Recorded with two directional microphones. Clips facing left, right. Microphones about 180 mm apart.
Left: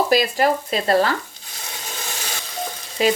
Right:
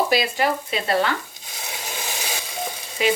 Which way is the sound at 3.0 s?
40° left (ahead or behind).